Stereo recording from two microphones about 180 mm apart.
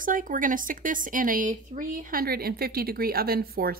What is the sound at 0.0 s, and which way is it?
Speech, 50° right (ahead or behind).